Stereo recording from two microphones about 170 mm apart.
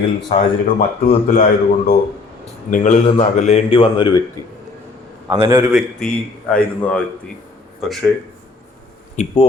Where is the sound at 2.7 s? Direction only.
45° left (ahead or behind); by 4.2 s 25° left (ahead or behind).